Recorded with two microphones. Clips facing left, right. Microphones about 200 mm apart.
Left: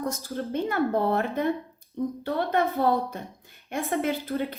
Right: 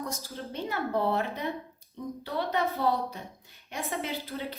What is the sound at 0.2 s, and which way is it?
A woman's voice, 50° left (ahead or behind).